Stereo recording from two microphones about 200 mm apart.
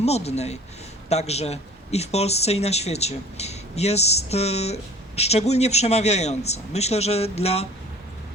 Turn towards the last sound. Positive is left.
turn(degrees=30)  # may be behind; listen again after turning